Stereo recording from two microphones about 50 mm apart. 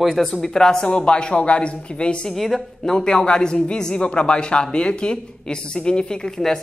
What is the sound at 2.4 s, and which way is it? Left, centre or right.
A man's voice, centre.